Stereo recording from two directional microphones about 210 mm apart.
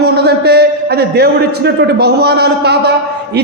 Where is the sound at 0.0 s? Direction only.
50° right (ahead or behind).